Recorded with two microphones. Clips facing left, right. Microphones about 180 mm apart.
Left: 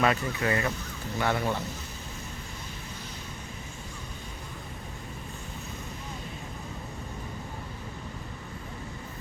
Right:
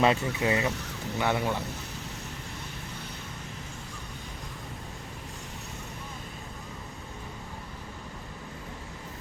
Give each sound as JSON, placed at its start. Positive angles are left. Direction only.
{"t": 0.0, "sound": "speech", "side_deg": -25}